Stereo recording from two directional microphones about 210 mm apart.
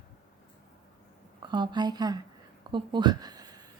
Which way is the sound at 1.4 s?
20° right (ahead or behind).